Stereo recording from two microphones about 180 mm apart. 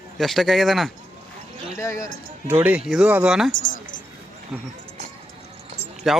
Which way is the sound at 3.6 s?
45° left (ahead or behind).